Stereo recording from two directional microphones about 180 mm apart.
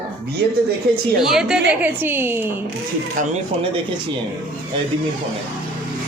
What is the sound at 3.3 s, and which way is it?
Speech, 30° right (ahead or behind).